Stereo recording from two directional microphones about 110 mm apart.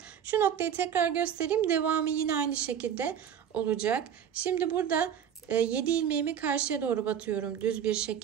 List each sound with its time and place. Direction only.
0.3 s speech: 15° right (ahead or behind)